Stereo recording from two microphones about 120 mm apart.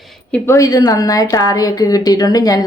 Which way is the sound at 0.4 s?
25° left (ahead or behind).